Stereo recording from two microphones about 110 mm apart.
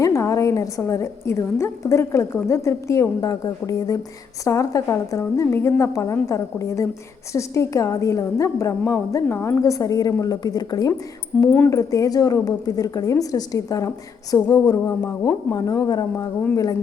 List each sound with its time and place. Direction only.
0.0 s a woman's voice: 25° left (ahead or behind)
11.3 s speech: 5° left (ahead or behind)
11.7 s a woman's voice: 30° left (ahead or behind)